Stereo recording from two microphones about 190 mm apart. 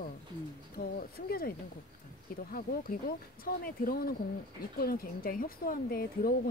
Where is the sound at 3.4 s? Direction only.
50° left (ahead or behind).